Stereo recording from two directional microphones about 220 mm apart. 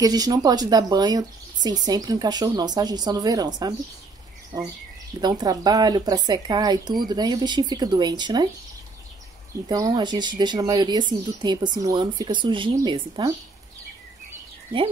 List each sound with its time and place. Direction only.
0.0 s speech: 15° right (ahead or behind)
5.2 s speech: 20° right (ahead or behind)
9.7 s speech: 20° right (ahead or behind)